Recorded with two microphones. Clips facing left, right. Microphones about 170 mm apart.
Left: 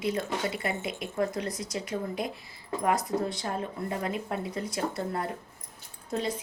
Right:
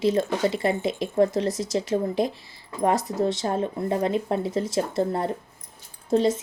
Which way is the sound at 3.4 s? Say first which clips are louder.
Right 7 dB; 25° right (ahead or behind).